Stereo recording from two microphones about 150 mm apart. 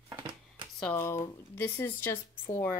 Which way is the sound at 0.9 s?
20° left (ahead or behind).